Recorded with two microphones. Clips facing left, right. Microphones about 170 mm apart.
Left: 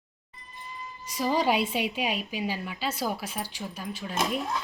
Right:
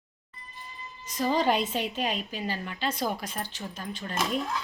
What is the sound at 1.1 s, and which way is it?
A woman's voice, 10° left (ahead or behind).